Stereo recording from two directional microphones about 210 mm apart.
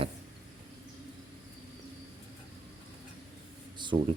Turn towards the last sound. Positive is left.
turn(degrees=-20)  # may be behind; listen again after turning